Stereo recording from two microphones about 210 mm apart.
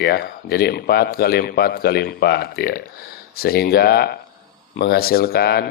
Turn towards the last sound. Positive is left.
turn(degrees=50)  # may be behind; listen again after turning